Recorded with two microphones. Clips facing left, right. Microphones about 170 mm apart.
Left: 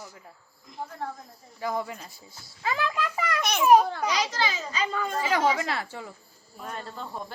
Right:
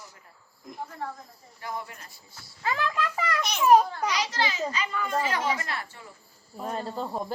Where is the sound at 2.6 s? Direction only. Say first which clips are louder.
Even; 10° left (ahead or behind).